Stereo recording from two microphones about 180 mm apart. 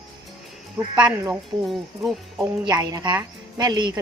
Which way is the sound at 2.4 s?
25° right (ahead or behind).